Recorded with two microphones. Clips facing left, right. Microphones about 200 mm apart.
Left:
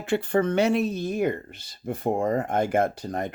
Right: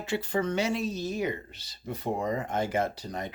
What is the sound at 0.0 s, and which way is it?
Speech, 55° left (ahead or behind).